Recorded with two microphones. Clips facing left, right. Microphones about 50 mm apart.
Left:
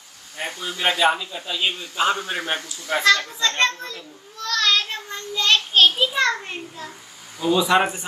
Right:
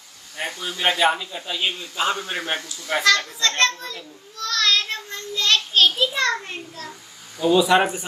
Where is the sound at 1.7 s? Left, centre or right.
Left.